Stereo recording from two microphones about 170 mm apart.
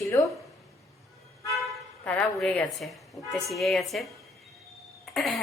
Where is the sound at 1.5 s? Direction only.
5° left (ahead or behind).